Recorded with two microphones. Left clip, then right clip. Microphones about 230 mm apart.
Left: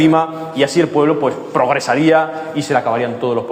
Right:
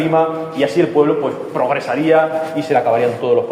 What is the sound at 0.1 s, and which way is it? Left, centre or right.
A man's voice, left.